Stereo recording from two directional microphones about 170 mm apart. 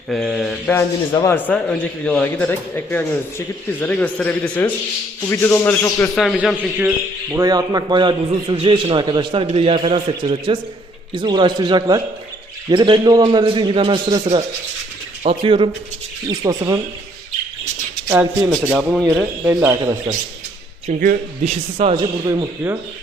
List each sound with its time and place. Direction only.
0.1 s speech: centre (ahead or behind)
1.1 s speech: 15° left (ahead or behind)
2.0 s speech: 5° left (ahead or behind)
6.1 s speech: centre (ahead or behind)
7.3 s a man's voice: 20° right (ahead or behind)
16.4 s a man's voice: 20° right (ahead or behind)
18.1 s speech: 10° right (ahead or behind)
18.5 s speech: centre (ahead or behind)
19.5 s a man's voice: 15° right (ahead or behind)
21.4 s a man's voice: 40° right (ahead or behind); by 22.8 s 15° right (ahead or behind)